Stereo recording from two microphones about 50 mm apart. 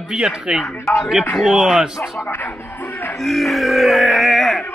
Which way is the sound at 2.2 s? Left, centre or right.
Left.